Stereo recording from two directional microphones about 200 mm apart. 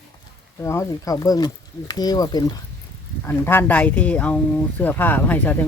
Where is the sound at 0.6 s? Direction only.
15° left (ahead or behind).